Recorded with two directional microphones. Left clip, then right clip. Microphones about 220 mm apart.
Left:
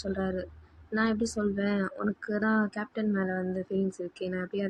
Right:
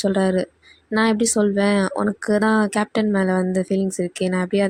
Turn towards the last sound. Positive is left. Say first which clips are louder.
# right 12 dB
turn(degrees=-45)  # may be behind; listen again after turning